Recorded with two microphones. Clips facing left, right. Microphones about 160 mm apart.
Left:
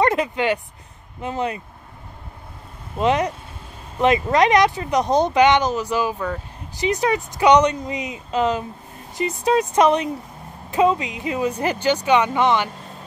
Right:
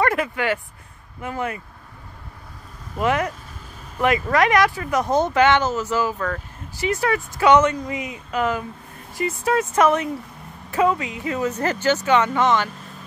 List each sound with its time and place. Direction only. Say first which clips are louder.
0.0 s a sound: left 2 dB; 20° left (ahead or behind)
1.2 s speech: left 2 dB; 20° left (ahead or behind)
3.0 s speech: left 2 dB; 20° left (ahead or behind)